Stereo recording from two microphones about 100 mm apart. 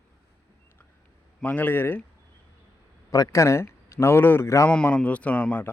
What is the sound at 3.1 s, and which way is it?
A man's voice, 35° left (ahead or behind).